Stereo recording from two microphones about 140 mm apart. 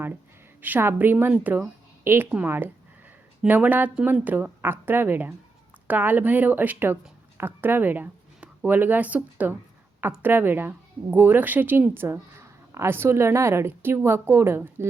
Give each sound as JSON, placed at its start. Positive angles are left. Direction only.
{"t": 0.6, "sound": "speech", "side_deg": -15}